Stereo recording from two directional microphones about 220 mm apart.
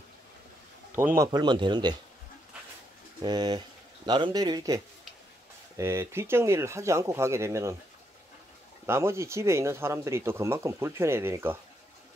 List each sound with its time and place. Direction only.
0.9 s speech: 10° right (ahead or behind)
3.2 s speech: 20° right (ahead or behind)
8.8 s speech: 10° right (ahead or behind)